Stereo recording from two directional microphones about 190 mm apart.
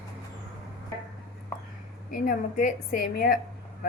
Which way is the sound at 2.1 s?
45° left (ahead or behind).